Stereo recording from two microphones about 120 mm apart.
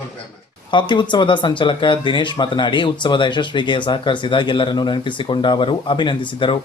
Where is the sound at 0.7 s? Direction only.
40° left (ahead or behind).